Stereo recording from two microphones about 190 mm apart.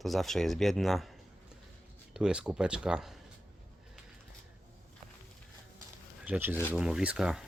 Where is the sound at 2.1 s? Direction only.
5° right (ahead or behind).